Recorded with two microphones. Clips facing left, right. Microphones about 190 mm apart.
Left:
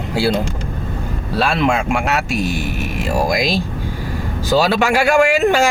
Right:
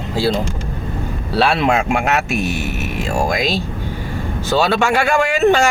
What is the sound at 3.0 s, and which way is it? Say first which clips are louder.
Speech: left 1 dB; 5° left (ahead or behind).